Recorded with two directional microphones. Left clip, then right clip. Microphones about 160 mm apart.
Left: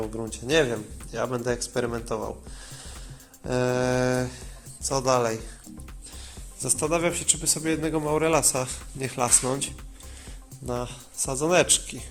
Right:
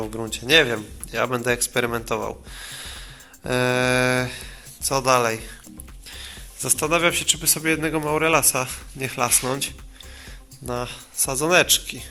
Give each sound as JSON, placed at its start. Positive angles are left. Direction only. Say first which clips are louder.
{"t": 0.3, "sound": "speech", "louder": "right 6 dB", "side_deg": -5}
{"t": 3.4, "sound": "a man's voice", "louder": "right 4 dB", "side_deg": -5}